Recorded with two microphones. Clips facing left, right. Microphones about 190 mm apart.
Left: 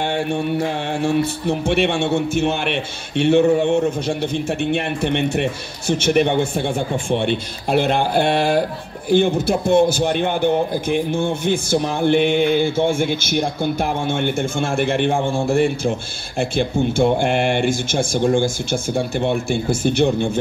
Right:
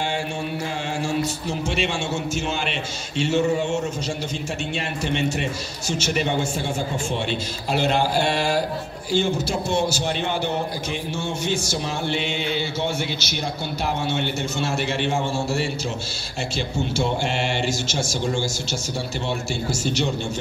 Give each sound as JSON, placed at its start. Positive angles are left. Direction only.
{"t": 0.0, "sound": "a man's voice", "side_deg": 60}